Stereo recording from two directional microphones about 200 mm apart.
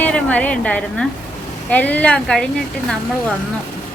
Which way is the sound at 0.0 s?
5° left (ahead or behind).